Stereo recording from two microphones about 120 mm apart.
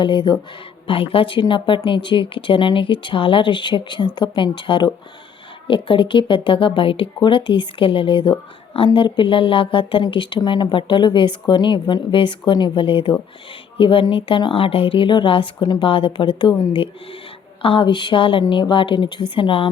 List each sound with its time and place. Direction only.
0.0 s speech: 40° left (ahead or behind)